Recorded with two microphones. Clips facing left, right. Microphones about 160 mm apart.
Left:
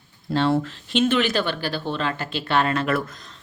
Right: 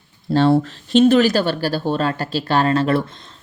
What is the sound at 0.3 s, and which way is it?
Speech, 35° right (ahead or behind).